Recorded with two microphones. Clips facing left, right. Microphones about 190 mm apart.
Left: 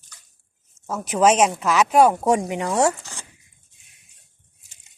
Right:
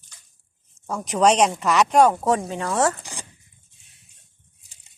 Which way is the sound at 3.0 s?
15° right (ahead or behind).